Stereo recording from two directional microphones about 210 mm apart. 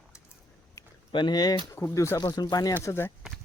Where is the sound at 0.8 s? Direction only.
20° left (ahead or behind).